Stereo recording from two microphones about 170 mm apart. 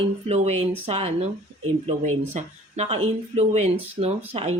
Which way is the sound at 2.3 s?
40° right (ahead or behind).